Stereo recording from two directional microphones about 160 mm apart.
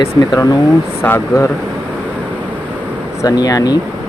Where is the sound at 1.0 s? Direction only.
15° left (ahead or behind).